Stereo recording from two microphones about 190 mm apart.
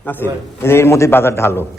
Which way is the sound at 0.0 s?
10° left (ahead or behind).